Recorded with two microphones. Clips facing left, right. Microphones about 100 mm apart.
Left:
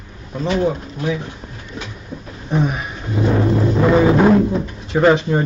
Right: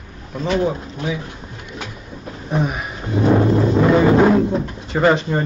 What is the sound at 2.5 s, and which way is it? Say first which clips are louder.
Speech: left 2 dB; centre (ahead or behind).